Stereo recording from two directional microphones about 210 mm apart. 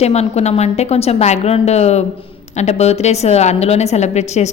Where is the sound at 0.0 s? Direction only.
30° left (ahead or behind).